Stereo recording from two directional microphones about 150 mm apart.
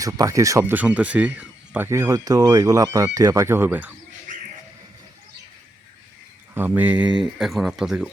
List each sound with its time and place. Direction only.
0.0 s speech: 20° right (ahead or behind)
6.5 s speech: 15° right (ahead or behind)